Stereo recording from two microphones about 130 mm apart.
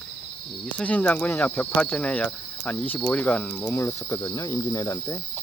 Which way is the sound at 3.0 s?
10° left (ahead or behind).